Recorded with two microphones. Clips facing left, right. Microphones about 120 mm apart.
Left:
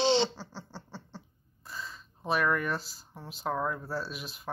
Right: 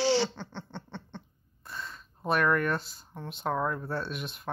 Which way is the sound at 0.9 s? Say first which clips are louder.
Right 3 dB; 5° left (ahead or behind).